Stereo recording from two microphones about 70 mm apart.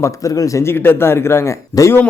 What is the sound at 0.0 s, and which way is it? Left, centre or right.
Speech, left.